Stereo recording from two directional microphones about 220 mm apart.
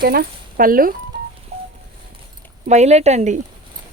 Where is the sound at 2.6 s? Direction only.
30° right (ahead or behind).